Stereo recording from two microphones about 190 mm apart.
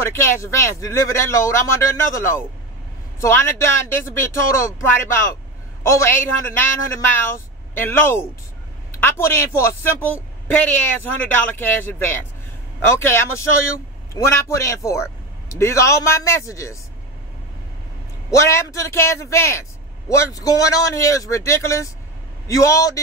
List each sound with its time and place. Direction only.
0.0 s a woman's voice: 15° left (ahead or behind)
18.3 s a woman's voice: 15° left (ahead or behind)